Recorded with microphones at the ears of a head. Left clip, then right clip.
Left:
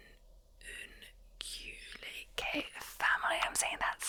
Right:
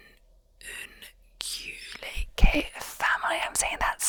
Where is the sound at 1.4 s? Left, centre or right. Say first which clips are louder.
Right 9 dB; right.